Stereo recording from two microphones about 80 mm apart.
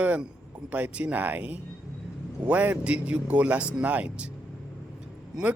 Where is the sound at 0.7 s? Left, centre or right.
Centre.